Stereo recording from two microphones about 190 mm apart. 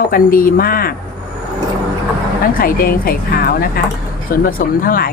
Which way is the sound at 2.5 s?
50° left (ahead or behind).